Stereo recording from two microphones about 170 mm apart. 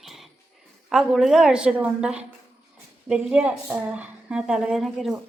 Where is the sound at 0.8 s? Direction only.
Centre (ahead or behind).